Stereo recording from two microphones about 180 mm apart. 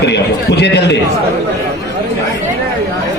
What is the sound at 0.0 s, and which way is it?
Speech, 70° left (ahead or behind).